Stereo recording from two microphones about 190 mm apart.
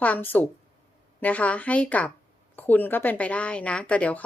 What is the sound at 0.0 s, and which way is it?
A woman's voice, 10° left (ahead or behind).